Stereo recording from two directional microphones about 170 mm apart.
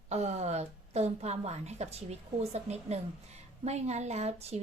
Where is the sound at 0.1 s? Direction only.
40° right (ahead or behind).